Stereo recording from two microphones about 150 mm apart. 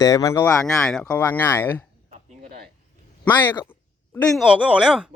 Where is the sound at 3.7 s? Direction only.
10° left (ahead or behind).